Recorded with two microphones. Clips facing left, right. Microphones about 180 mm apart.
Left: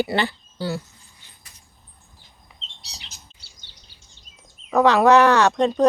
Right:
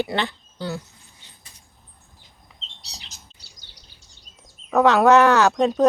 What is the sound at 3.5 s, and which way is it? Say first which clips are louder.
Bird vocalization: right 1 dB; 35° right (ahead or behind).